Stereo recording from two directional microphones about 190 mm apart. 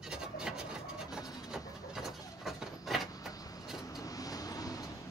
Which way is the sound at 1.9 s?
Centre (ahead or behind).